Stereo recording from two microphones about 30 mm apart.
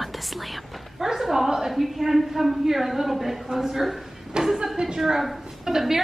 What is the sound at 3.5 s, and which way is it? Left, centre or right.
A woman's voice, centre.